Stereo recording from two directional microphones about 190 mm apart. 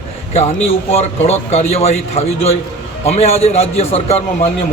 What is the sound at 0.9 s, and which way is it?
A man's voice, 35° left (ahead or behind).